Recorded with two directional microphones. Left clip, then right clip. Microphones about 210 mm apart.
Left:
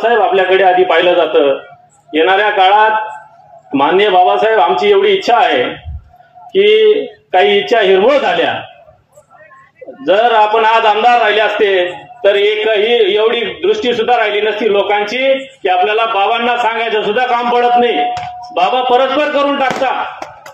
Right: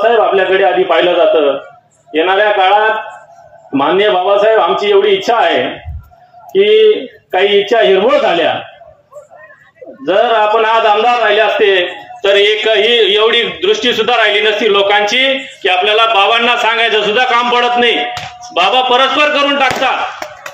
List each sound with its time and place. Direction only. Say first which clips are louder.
0.0 s a man's voice: right 1 dB; 50° left (ahead or behind)
6.5 s a man's voice: even; 50° left (ahead or behind)
10.0 s a man's voice: left 1 dB; 50° left (ahead or behind)